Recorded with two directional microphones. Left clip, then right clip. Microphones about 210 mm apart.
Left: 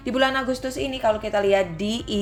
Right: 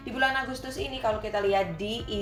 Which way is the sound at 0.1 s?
50° left (ahead or behind).